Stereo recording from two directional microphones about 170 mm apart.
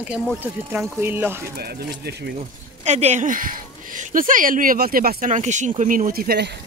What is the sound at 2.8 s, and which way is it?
Speech, 40° right (ahead or behind).